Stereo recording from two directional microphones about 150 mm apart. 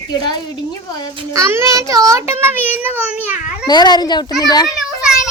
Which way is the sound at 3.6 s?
30° left (ahead or behind).